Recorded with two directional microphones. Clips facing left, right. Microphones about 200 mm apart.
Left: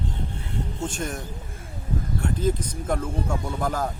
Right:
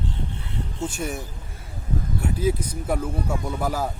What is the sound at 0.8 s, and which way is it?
Speech, 10° right (ahead or behind).